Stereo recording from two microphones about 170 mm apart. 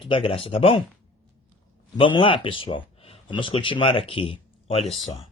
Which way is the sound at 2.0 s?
30° left (ahead or behind).